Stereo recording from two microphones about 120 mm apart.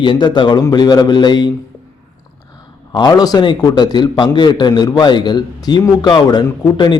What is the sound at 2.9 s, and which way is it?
A man's voice, 35° left (ahead or behind).